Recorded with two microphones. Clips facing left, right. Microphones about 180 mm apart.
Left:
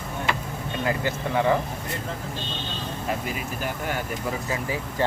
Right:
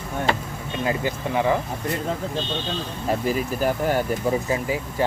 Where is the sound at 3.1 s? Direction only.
35° right (ahead or behind).